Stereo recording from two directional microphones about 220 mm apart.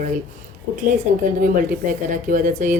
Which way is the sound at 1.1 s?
35° right (ahead or behind).